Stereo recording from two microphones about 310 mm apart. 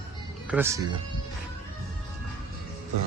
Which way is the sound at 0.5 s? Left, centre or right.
Centre.